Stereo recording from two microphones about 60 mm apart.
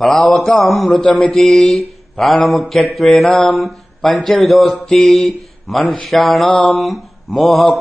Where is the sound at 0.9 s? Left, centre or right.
Centre.